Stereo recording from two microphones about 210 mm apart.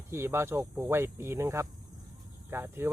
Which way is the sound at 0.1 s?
10° right (ahead or behind).